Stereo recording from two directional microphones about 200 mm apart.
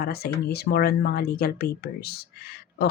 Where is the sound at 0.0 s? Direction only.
50° left (ahead or behind).